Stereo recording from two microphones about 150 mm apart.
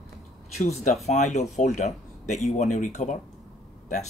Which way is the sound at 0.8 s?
50° left (ahead or behind).